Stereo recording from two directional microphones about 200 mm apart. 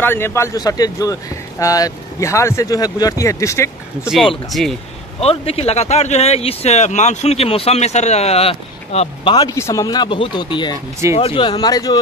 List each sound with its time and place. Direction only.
0.0 s speech: 10° left (ahead or behind)
4.0 s speech: centre (ahead or behind)
5.2 s speech: 30° left (ahead or behind)